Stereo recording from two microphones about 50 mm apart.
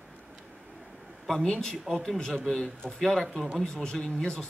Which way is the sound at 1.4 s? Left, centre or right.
Centre.